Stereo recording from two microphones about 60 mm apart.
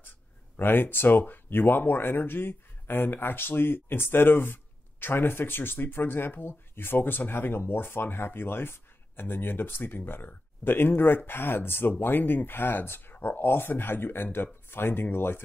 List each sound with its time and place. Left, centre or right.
0.6 s speech: left